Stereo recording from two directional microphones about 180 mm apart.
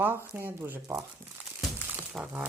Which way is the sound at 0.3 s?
10° right (ahead or behind).